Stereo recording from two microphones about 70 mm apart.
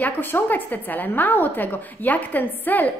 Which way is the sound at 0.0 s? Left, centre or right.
Left.